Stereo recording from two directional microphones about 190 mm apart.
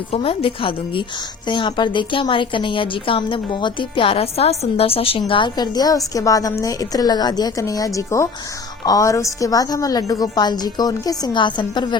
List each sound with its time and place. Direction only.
0.1 s a woman's voice: 30° left (ahead or behind)